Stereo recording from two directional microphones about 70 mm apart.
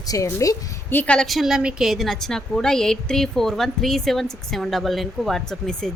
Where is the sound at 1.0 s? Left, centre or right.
Centre.